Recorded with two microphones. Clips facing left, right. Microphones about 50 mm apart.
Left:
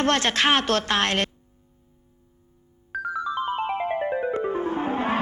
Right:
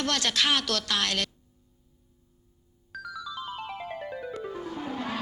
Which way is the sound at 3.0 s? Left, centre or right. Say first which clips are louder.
Left 10 dB; left.